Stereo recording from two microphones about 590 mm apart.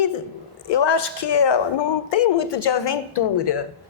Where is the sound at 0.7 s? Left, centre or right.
Left.